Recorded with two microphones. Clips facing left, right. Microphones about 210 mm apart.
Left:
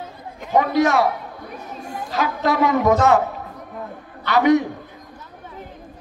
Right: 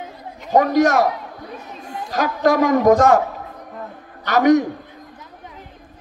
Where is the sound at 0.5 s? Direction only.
45° right (ahead or behind).